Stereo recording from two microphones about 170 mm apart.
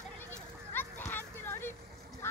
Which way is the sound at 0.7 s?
10° left (ahead or behind).